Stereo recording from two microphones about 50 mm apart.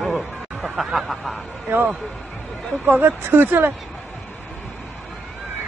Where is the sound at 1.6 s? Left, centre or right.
Right.